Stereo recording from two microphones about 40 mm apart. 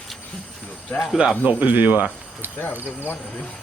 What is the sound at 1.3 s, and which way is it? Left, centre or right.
Speech, right.